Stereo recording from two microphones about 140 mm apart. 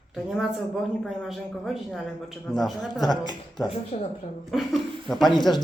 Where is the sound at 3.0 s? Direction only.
30° left (ahead or behind).